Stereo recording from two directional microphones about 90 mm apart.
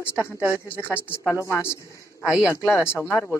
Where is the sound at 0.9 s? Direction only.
25° left (ahead or behind).